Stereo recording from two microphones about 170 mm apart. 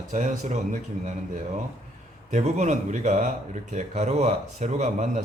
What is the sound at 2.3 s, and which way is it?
Speech, 45° right (ahead or behind).